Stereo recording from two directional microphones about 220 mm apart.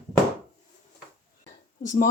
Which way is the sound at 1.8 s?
35° left (ahead or behind).